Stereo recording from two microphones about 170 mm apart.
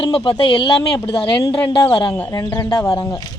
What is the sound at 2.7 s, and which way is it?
Speech, 30° left (ahead or behind).